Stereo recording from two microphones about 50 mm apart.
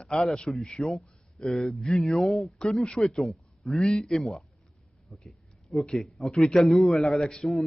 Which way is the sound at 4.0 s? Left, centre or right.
Centre.